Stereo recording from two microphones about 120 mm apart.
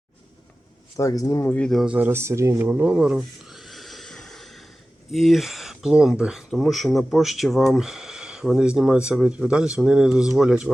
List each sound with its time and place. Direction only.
0.9 s a man's voice: 30° left (ahead or behind)
1.5 s speech: 10° left (ahead or behind)
1.7 s a sound: 5° right (ahead or behind)
5.1 s speech: centre (ahead or behind)